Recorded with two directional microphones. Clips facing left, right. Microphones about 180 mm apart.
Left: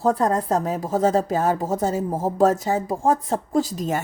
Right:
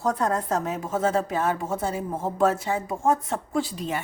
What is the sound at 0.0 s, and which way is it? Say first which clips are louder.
Speech: left 4 dB; 35° left (ahead or behind).